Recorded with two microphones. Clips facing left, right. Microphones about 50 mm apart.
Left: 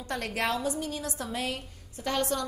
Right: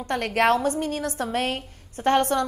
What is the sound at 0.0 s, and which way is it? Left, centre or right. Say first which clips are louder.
A woman's voice: right 9 dB; right.